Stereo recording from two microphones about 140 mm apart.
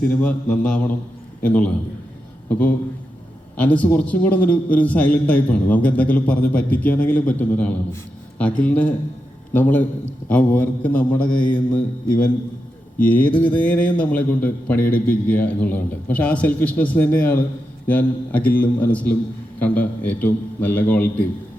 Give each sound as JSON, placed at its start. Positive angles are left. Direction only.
{"t": 0.1, "sound": "a man's voice", "side_deg": 10}
{"t": 14.8, "sound": "a man's voice", "side_deg": 80}
{"t": 15.3, "sound": "a man's voice", "side_deg": 10}